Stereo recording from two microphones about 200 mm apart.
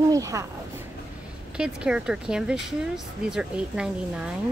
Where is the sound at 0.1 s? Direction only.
15° right (ahead or behind).